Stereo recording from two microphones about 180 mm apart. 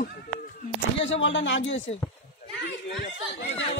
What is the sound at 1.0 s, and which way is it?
Speech, 90° left.